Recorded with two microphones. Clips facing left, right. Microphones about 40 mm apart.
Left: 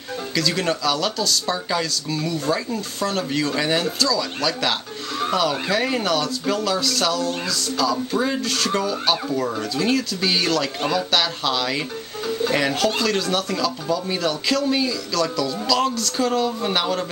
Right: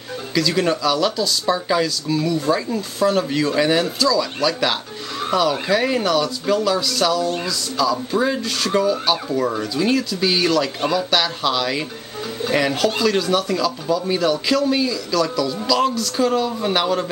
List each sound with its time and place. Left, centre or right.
0.3 s speech: centre